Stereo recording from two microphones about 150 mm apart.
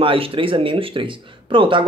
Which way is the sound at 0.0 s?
35° right (ahead or behind).